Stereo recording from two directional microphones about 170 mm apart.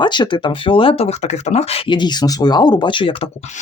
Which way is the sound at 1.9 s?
25° left (ahead or behind).